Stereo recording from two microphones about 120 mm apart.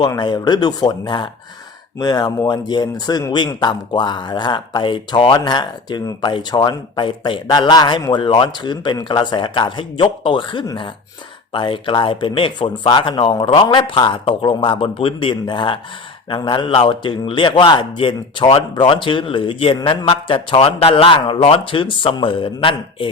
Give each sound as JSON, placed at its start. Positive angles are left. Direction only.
{"t": 0.0, "sound": "speech", "side_deg": 35}